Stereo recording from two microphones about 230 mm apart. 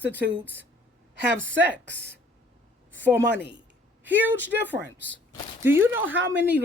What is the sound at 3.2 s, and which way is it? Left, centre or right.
Speech, right.